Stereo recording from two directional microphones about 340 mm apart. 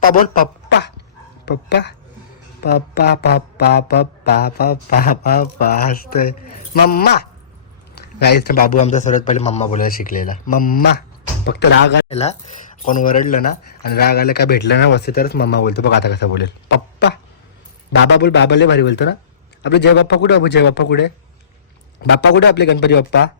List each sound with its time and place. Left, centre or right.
0.0 s a sound: left
1.5 s a man's voice: left
8.2 s a man's voice: left
12.0 s a man's voice: centre